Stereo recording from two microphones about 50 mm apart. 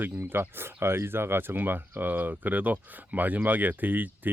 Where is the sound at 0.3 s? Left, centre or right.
Right.